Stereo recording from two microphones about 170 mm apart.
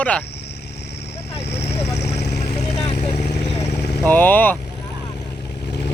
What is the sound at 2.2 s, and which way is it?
Vehicle, 75° left (ahead or behind).